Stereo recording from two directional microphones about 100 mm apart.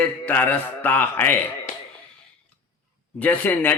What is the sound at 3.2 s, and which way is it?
Speech, 15° left (ahead or behind).